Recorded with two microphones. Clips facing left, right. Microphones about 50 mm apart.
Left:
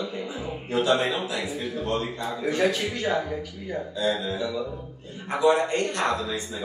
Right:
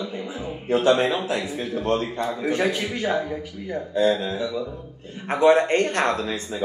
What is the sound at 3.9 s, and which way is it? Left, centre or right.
Speech, right.